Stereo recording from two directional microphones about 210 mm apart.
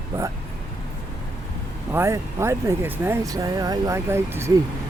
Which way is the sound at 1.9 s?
15° right (ahead or behind).